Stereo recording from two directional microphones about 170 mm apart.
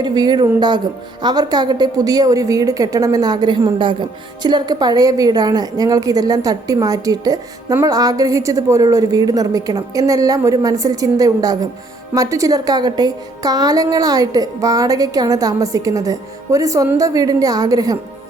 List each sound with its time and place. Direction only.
0.0 s a woman's voice: 25° right (ahead or behind)